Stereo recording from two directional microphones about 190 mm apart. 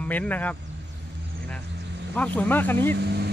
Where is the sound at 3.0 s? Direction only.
60° right (ahead or behind).